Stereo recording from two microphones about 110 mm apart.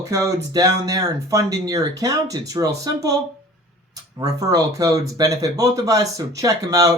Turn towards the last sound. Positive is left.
turn(degrees=-30)  # may be behind; listen again after turning